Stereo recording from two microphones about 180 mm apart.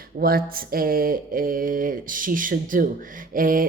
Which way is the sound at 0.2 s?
55° right (ahead or behind).